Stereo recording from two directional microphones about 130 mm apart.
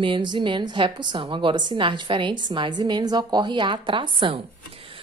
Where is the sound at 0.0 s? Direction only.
40° right (ahead or behind).